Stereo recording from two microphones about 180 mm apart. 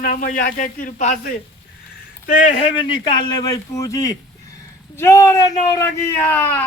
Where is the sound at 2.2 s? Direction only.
50° left (ahead or behind).